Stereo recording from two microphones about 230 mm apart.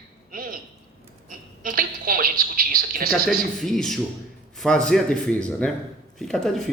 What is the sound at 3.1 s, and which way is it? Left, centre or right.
Speech, centre.